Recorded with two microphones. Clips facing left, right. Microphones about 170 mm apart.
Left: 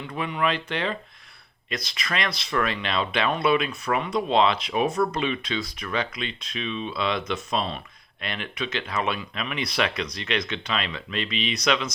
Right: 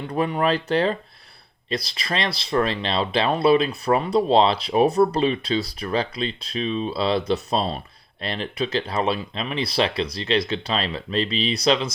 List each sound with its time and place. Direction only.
0.0 s speech: 40° right (ahead or behind)